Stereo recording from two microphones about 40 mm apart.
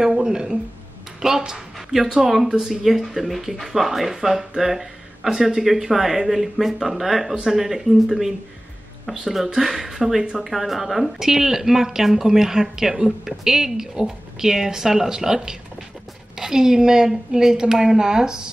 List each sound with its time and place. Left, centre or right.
0.0 s speech: centre
1.4 s a sound: centre
2.2 s speech: centre
9.6 s speech: centre